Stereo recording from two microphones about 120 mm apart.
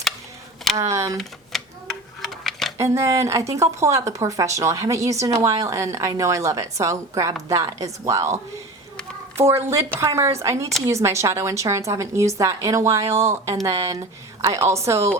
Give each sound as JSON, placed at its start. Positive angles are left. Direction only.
{"t": 0.8, "sound": "speech", "side_deg": -25}
{"t": 1.1, "sound": "typewriter", "side_deg": 5}
{"t": 2.2, "sound": "a sound", "side_deg": 0}
{"t": 2.7, "sound": "speech", "side_deg": -25}
{"t": 9.4, "sound": "speech", "side_deg": -20}